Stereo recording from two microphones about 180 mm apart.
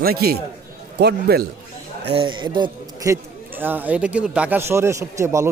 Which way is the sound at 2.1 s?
30° right (ahead or behind).